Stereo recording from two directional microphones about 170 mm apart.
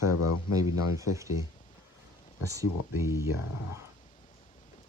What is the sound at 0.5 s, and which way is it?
Speech, 20° right (ahead or behind).